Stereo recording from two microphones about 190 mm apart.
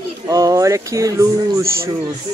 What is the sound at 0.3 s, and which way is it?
Speech, 20° right (ahead or behind).